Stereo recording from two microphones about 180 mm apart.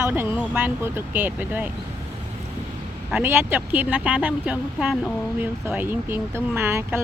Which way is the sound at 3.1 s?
10° right (ahead or behind).